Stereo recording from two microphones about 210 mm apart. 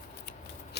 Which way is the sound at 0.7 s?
50° left (ahead or behind).